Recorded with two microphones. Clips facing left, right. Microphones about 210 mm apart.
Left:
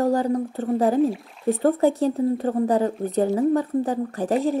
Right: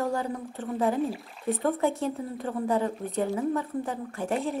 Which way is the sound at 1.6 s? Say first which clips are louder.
Left 8 dB; 35° left (ahead or behind).